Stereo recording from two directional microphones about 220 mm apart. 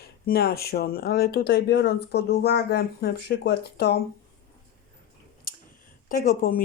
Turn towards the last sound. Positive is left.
turn(degrees=40)  # may be behind; listen again after turning